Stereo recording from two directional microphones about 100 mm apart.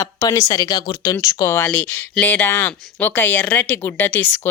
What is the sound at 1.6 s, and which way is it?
Speech, 15° left (ahead or behind).